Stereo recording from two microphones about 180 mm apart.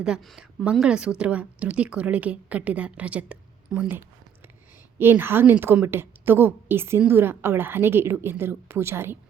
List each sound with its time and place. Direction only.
0.0 s a woman's voice: centre (ahead or behind)